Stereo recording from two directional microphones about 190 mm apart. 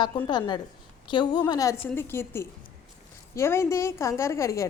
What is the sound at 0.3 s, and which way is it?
A woman's voice, 20° left (ahead or behind).